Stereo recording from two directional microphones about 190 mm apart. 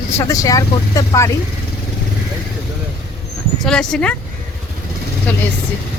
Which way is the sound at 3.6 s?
5° left (ahead or behind).